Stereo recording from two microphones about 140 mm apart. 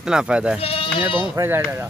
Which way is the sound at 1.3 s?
15° right (ahead or behind).